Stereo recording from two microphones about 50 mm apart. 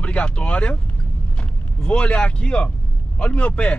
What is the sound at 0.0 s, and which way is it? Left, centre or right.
Speech, left.